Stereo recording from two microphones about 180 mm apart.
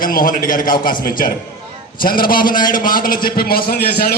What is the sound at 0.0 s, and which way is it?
A man's voice, 50° left (ahead or behind).